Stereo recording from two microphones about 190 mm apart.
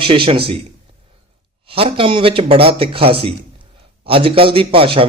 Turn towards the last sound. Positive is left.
turn(degrees=-30)  # may be behind; listen again after turning